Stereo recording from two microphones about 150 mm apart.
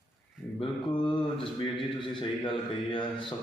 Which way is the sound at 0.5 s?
35° left (ahead or behind).